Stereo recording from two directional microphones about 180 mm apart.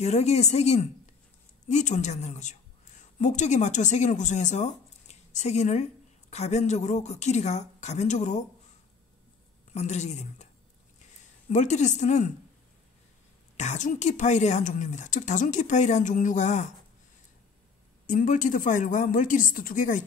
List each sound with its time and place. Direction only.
0.0 s speech: 35° left (ahead or behind)
9.7 s speech: 40° left (ahead or behind)
13.6 s speech: 40° left (ahead or behind)
18.0 s speech: 45° left (ahead or behind)